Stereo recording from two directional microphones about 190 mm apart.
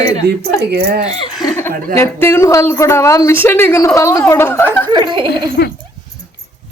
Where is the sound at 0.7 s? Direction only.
50° right (ahead or behind).